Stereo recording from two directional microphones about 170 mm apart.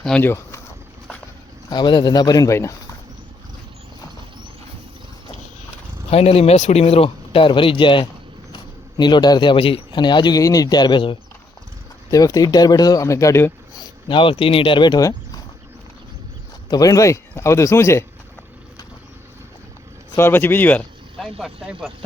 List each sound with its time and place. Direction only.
0.0 s speech: 10° left (ahead or behind)
1.7 s speech: 25° left (ahead or behind)
6.1 s a man's voice: 35° left (ahead or behind); by 13.5 s 15° left (ahead or behind)
14.1 s speech: 30° left (ahead or behind)
16.6 s speech: 20° left (ahead or behind)
20.1 s speech: 15° left (ahead or behind); by 21.9 s 5° right (ahead or behind)